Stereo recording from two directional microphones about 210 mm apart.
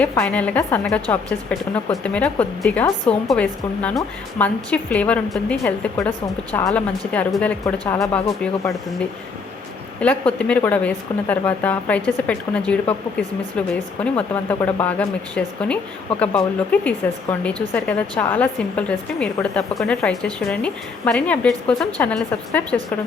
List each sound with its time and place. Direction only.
0.1 s a woman's voice: 10° left (ahead or behind)
7.6 s a woman's voice: 15° left (ahead or behind)
10.0 s a woman's voice: 5° left (ahead or behind)
14.0 s a woman's voice: 5° left (ahead or behind)